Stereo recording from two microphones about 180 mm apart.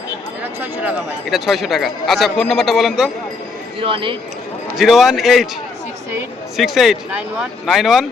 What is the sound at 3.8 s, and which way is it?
Speech, 30° right (ahead or behind).